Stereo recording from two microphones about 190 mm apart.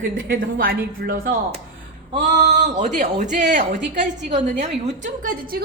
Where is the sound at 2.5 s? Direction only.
45° right (ahead or behind).